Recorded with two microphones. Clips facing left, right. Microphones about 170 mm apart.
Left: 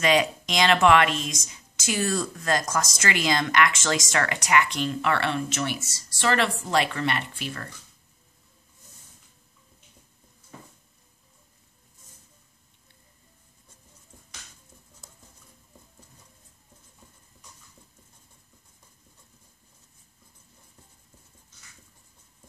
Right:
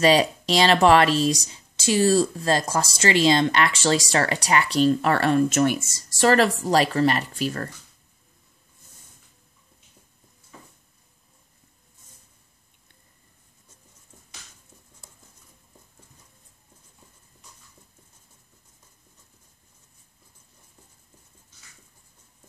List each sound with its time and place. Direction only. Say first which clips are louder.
0.0 s speech: right 4 dB; 35° right (ahead or behind)